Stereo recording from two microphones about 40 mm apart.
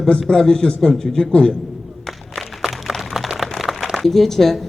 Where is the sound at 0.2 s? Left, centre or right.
Centre.